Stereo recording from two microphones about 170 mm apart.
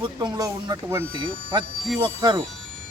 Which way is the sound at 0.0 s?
25° right (ahead or behind).